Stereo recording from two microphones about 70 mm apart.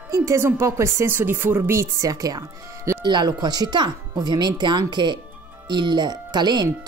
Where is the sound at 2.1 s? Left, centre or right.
Right.